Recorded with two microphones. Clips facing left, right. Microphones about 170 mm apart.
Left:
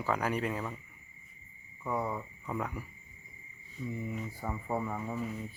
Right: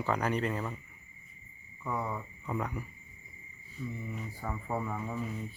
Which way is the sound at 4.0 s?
10° left (ahead or behind).